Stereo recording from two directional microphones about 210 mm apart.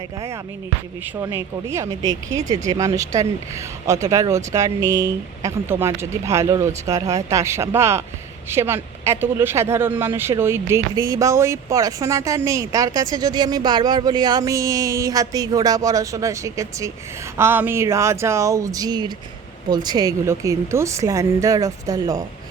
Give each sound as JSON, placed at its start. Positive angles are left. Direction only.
{"t": 1.2, "sound": "speech", "side_deg": -15}